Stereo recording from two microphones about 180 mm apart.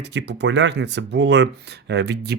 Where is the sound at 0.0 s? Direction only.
75° right (ahead or behind).